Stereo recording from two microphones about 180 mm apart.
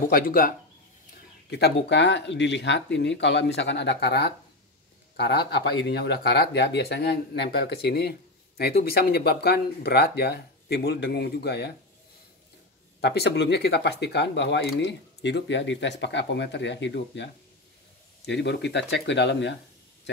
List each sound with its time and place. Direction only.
0.1 s speech: 50° left (ahead or behind)
1.5 s speech: 70° left (ahead or behind)
13.0 s speech: 70° left (ahead or behind); by 17.3 s 85° left
18.2 s speech: 75° left (ahead or behind)